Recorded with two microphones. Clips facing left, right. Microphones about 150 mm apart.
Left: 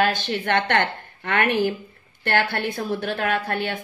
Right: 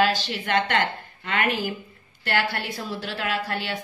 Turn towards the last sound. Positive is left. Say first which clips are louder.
# left 4 dB
turn(degrees=55)  # may be behind; listen again after turning